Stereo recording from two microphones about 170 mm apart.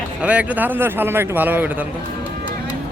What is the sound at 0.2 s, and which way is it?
A man's voice, 10° right (ahead or behind).